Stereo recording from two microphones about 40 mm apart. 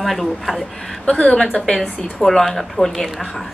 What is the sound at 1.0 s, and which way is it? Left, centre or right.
Speech, left.